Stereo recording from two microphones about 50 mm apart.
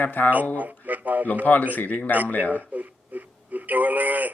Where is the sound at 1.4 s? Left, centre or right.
Left.